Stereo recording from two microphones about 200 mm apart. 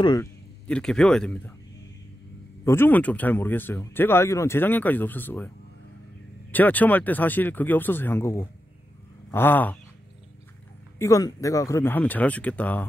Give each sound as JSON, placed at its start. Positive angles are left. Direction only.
{"t": 0.0, "sound": "speech", "side_deg": 20}
{"t": 0.7, "sound": "speech", "side_deg": 5}
{"t": 2.6, "sound": "speech", "side_deg": 10}
{"t": 6.5, "sound": "speech", "side_deg": 10}
{"t": 11.0, "sound": "speech", "side_deg": 15}